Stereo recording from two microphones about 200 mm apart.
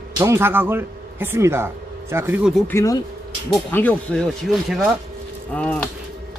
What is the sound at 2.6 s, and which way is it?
Speech, 15° left (ahead or behind).